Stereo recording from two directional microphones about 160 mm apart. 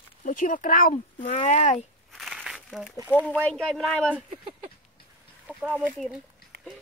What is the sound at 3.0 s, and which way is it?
Speech, 10° left (ahead or behind).